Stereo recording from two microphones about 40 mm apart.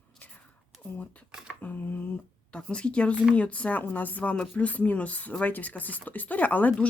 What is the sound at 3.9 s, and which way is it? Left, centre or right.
Speech, left.